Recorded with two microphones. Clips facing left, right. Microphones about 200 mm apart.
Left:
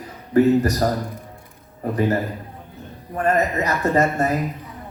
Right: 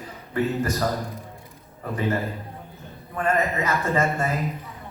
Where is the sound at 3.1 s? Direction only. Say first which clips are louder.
Left 4 dB; 40° left (ahead or behind).